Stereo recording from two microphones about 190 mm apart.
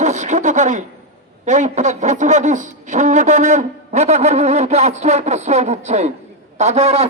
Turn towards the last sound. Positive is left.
turn(degrees=-35)  # may be behind; listen again after turning